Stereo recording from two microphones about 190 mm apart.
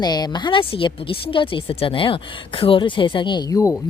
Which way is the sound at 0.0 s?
20° left (ahead or behind).